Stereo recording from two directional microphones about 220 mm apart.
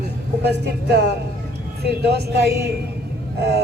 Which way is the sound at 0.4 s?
50° right (ahead or behind).